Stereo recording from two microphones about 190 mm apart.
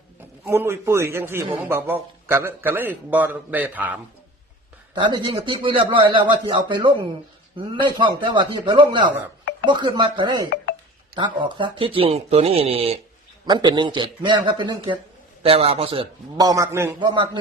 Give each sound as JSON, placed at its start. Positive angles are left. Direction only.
{"t": 0.5, "sound": "a man's voice", "side_deg": -15}
{"t": 4.9, "sound": "speech", "side_deg": -25}
{"t": 9.4, "sound": "a sound", "side_deg": 70}
{"t": 9.6, "sound": "speech", "side_deg": -25}